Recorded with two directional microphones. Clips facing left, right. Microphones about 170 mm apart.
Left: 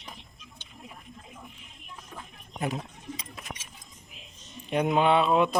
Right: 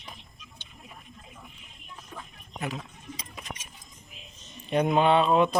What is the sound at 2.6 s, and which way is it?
Speech, 45° left (ahead or behind).